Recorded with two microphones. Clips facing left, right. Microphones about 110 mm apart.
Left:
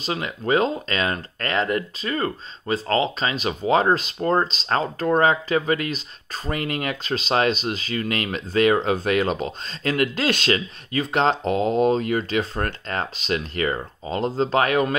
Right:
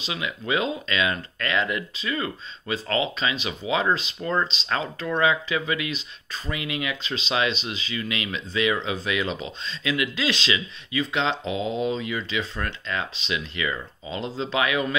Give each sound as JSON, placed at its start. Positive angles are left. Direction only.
{"t": 0.0, "sound": "speech", "side_deg": 45}